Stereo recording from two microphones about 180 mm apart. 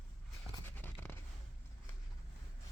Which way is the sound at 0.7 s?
10° left (ahead or behind).